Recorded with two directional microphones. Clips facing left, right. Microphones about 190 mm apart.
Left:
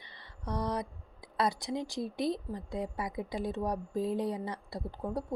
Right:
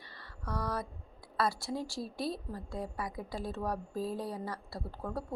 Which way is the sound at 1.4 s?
20° left (ahead or behind).